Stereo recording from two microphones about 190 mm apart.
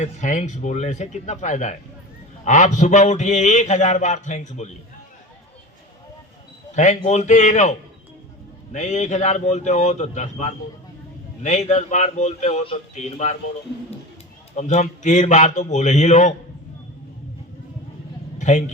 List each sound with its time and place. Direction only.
0.0 s a man's voice: 40° left (ahead or behind)
6.7 s a man's voice: 40° left (ahead or behind)
14.5 s a man's voice: 35° left (ahead or behind)
18.3 s a sound: 40° left (ahead or behind)